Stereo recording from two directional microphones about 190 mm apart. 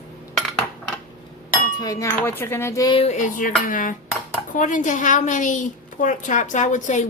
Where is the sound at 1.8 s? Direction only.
15° left (ahead or behind); by 3.5 s 45° left (ahead or behind).